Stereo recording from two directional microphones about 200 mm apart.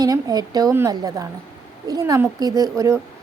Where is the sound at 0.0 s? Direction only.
20° right (ahead or behind).